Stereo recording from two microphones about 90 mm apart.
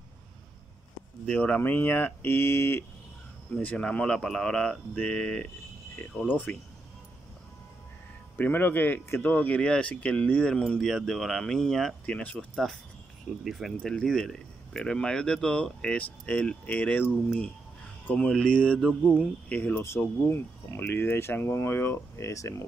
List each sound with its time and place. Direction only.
1.2 s speech: 15° left (ahead or behind)
3.6 s speech: 15° left (ahead or behind)
8.4 s speech: 20° left (ahead or behind)
13.4 s speech: 5° right (ahead or behind); by 17.1 s 15° left (ahead or behind)
18.1 s speech: 10° left (ahead or behind); by 22.7 s 35° left (ahead or behind)